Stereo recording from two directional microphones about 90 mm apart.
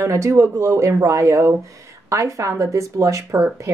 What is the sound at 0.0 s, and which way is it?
Speech, 35° right (ahead or behind).